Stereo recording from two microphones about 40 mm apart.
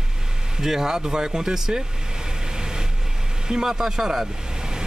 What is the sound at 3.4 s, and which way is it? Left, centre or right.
Speech, centre.